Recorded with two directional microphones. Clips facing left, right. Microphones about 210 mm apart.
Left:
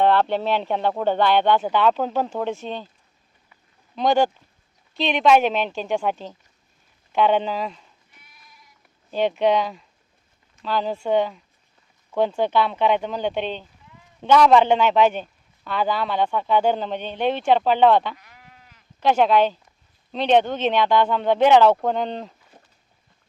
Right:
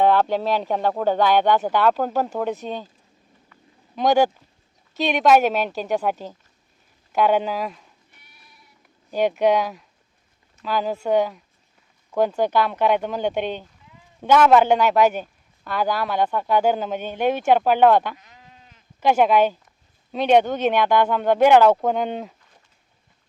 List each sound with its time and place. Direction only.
0.0 s speech: 10° right (ahead or behind)
3.9 s speech: 10° right (ahead or behind)
9.0 s speech: 10° right (ahead or behind)
18.2 s sheep: 20° right (ahead or behind)
18.9 s speech: 10° right (ahead or behind)